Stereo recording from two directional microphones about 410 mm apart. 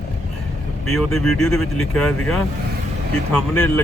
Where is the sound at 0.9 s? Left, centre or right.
Centre.